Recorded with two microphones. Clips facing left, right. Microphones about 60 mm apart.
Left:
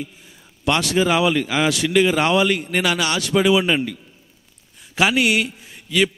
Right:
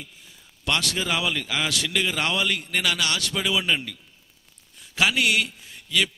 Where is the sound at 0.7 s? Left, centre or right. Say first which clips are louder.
Left 8 dB; centre.